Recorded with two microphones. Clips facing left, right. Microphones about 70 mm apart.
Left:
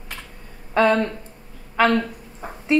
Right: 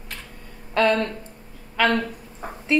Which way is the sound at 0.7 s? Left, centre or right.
Centre.